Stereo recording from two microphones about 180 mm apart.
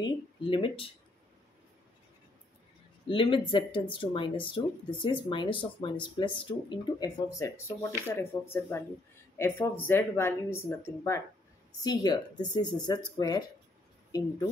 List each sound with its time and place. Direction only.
0.0 s speech: 30° left (ahead or behind)
3.1 s speech: 30° left (ahead or behind)